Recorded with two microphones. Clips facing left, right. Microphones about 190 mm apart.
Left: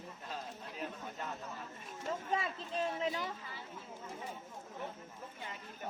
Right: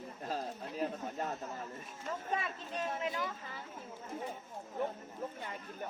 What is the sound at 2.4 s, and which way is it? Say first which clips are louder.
Speech: left 2 dB; 25° left (ahead or behind).